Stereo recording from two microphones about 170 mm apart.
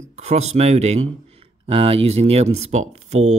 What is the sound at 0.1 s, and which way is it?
Speech, 40° right (ahead or behind).